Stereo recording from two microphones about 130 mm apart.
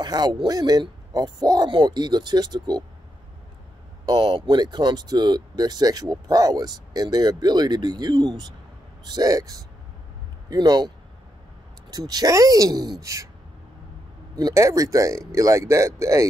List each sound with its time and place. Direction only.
0.0 s speech: 35° right (ahead or behind)
4.0 s speech: 35° right (ahead or behind)
11.9 s speech: 30° right (ahead or behind)
14.3 s speech: 25° right (ahead or behind)